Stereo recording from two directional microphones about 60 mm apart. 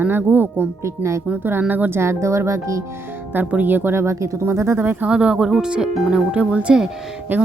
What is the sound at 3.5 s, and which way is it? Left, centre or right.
Speech, right.